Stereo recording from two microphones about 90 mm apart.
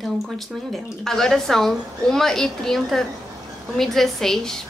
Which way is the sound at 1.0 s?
5° left (ahead or behind).